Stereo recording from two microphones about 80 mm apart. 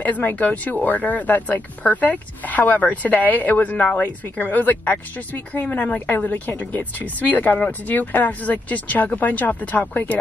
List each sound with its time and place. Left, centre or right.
0.0 s speech: left